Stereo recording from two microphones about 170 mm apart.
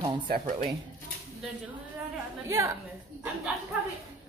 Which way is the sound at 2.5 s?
15° right (ahead or behind).